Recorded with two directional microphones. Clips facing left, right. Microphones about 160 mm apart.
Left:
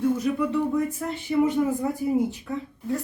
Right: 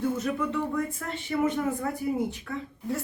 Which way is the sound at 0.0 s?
10° left (ahead or behind).